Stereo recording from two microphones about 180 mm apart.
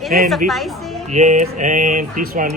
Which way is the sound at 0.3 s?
Centre (ahead or behind).